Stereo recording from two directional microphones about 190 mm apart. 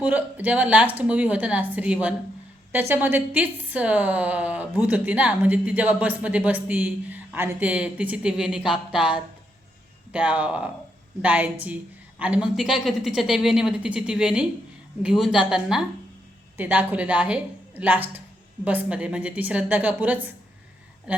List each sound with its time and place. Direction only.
0.0 s a woman's voice: 10° right (ahead or behind)
9.0 s speech: 25° left (ahead or behind)
10.1 s a woman's voice: 5° right (ahead or behind)